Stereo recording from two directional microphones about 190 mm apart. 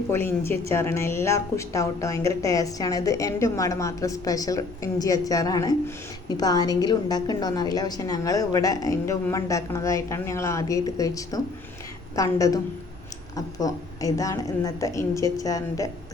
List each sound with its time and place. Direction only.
0.1 s a woman's voice: 10° left (ahead or behind)